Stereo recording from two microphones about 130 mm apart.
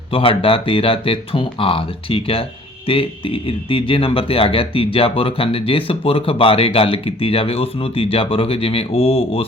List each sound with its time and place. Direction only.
0.1 s speech: 45° left (ahead or behind)